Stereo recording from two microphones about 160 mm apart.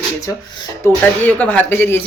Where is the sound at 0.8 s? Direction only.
15° left (ahead or behind).